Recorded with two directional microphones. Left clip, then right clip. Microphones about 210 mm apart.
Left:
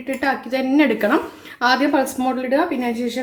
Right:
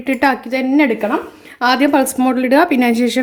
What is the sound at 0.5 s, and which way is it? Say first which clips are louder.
Speech: right 3 dB; 20° right (ahead or behind).